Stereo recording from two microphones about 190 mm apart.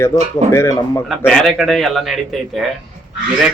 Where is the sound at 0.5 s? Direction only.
15° left (ahead or behind).